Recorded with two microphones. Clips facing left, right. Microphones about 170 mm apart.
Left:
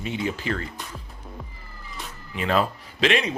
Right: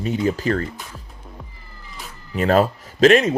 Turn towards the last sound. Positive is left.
turn(degrees=-45)  # may be behind; listen again after turning